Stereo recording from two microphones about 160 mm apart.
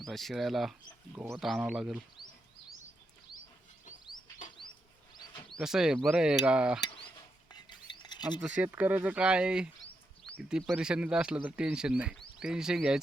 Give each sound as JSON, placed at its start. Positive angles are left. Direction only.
{"t": 0.0, "sound": "speech", "side_deg": 0}
{"t": 1.1, "sound": "speech", "side_deg": -15}
{"t": 1.4, "sound": "speech", "side_deg": 0}
{"t": 5.1, "sound": "a sound", "side_deg": 25}
{"t": 5.5, "sound": "speech", "side_deg": 0}
{"t": 6.8, "sound": "a sound", "side_deg": 35}
{"t": 8.4, "sound": "speech", "side_deg": -5}
{"t": 10.7, "sound": "speech", "side_deg": -5}